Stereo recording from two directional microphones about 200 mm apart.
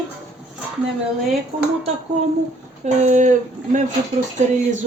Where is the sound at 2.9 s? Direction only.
35° right (ahead or behind).